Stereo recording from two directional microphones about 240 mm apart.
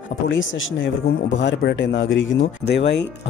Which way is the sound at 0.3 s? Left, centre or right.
Left.